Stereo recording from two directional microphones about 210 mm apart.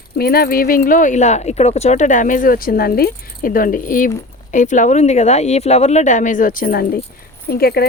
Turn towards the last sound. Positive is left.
turn(degrees=50)  # may be behind; listen again after turning